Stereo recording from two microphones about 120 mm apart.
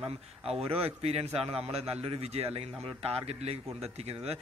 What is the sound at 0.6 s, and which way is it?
Speech, 55° right (ahead or behind).